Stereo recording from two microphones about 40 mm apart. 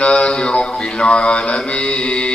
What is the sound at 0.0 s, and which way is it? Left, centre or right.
Mantra, left.